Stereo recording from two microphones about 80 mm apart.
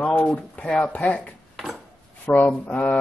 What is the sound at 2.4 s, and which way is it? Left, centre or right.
Speech, centre.